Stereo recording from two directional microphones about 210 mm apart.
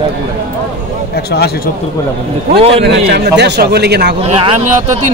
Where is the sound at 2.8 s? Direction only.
55° right (ahead or behind).